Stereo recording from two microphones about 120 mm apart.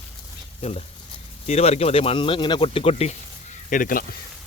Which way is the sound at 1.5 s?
60° left (ahead or behind).